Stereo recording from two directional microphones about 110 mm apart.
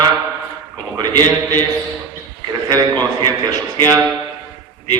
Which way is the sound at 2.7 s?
40° right (ahead or behind).